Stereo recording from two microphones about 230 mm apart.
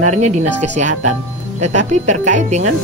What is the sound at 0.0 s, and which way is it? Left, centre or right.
Speech, right.